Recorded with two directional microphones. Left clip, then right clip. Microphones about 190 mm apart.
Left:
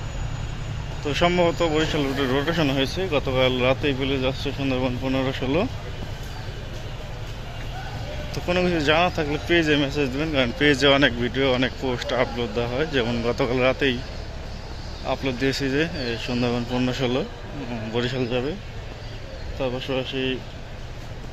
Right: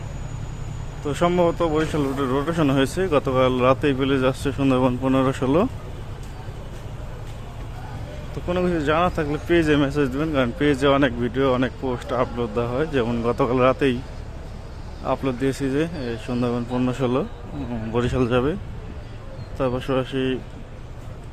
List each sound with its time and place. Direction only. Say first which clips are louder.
1.0 s speech: even; 20° right (ahead or behind)
2.7 s speech: right 3 dB; 40° right (ahead or behind)
8.4 s speech: left 1 dB; 15° right (ahead or behind)
15.0 s speech: right 1 dB; 25° right (ahead or behind)
19.5 s speech: right 3 dB; 35° right (ahead or behind)